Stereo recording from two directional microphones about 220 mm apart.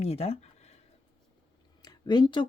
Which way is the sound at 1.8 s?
20° left (ahead or behind).